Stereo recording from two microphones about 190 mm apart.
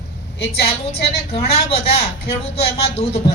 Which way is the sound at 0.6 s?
30° left (ahead or behind).